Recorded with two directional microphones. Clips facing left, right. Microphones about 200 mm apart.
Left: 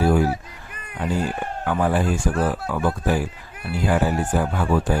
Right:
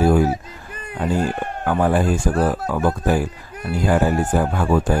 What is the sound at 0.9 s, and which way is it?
Speech, 45° right (ahead or behind).